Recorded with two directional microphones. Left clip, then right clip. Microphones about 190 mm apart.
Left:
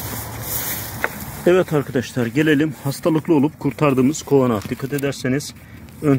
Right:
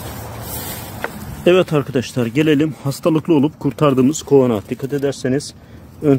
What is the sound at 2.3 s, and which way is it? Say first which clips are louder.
Speech: right 2 dB; 25° right (ahead or behind).